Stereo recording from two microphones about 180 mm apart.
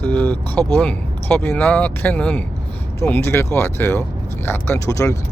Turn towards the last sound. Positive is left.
turn(degrees=15)  # may be behind; listen again after turning